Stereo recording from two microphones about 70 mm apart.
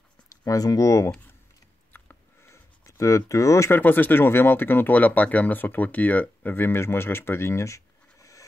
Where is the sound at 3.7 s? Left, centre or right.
Left.